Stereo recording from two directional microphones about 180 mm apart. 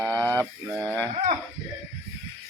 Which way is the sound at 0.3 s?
10° left (ahead or behind).